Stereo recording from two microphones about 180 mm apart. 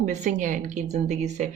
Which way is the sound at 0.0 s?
40° right (ahead or behind).